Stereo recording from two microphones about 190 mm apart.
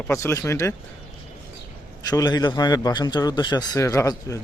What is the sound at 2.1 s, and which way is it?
A man's voice, 20° left (ahead or behind).